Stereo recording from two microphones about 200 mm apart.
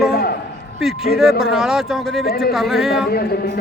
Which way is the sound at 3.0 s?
50° left (ahead or behind).